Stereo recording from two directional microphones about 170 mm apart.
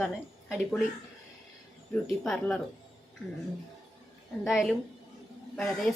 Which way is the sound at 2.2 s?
5° left (ahead or behind).